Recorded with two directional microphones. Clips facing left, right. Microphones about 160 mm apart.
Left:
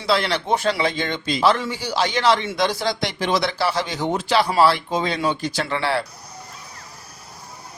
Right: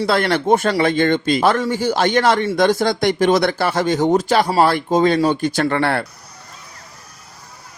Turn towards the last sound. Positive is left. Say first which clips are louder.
# right 5 dB
turn(degrees=-55)  # may be behind; listen again after turning